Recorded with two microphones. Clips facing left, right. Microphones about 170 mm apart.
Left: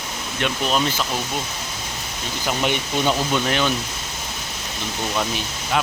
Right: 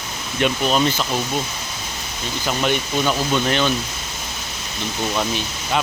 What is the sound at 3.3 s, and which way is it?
Speech, 5° left (ahead or behind).